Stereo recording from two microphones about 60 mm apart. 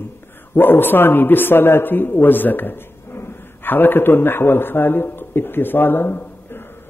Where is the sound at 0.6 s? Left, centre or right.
Left.